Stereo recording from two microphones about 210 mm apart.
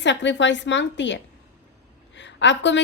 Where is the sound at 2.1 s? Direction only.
60° left (ahead or behind).